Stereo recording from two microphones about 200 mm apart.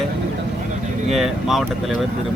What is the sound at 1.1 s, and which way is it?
Speech, centre (ahead or behind).